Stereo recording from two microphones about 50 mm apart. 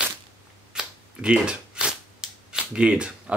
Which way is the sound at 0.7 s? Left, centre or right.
Right.